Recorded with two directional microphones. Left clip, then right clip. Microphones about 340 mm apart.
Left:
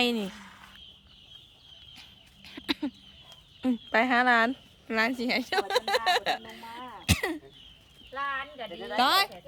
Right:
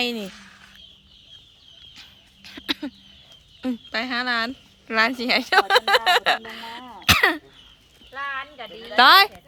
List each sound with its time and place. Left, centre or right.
0.0 s speech: centre
0.3 s a sound: left
1.9 s chicken: centre
3.6 s a woman's voice: centre
6.5 s a sound: centre
7.0 s cough: centre
8.1 s speech: centre